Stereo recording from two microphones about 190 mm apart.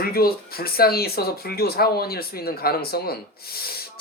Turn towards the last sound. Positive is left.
turn(degrees=55)  # may be behind; listen again after turning